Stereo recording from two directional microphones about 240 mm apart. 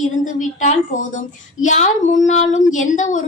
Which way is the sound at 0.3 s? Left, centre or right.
Left.